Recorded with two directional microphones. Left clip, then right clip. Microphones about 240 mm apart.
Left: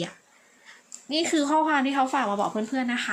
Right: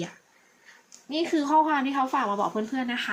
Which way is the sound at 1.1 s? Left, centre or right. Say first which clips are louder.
Even; centre.